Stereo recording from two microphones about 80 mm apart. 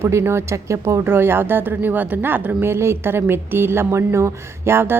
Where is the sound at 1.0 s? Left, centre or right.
Right.